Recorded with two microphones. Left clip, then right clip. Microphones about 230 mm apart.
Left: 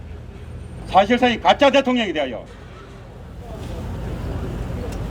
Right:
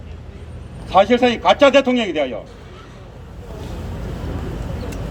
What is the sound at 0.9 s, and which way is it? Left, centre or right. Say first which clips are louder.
A man's voice: right 2 dB; left.